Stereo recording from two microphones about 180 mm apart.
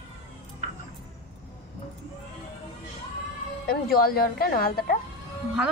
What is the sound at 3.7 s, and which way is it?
A woman's voice, 55° left (ahead or behind).